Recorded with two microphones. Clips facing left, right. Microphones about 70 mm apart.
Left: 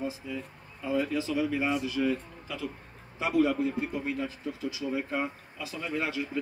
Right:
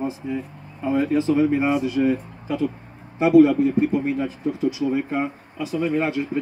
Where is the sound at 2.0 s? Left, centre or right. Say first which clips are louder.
Right 8 dB; right.